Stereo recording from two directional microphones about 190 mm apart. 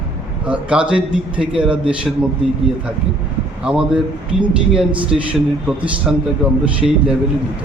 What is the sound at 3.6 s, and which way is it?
Speech, 5° right (ahead or behind).